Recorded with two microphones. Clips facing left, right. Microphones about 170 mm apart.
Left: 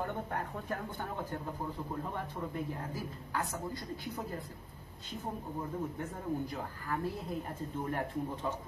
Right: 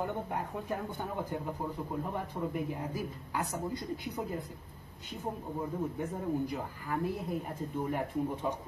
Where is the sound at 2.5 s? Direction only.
15° right (ahead or behind).